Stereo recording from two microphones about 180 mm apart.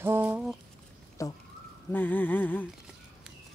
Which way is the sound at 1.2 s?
15° left (ahead or behind).